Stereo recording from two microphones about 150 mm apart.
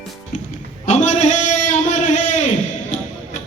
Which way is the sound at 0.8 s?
50° left (ahead or behind).